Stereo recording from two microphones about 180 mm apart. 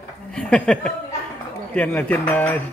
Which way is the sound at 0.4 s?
5° left (ahead or behind).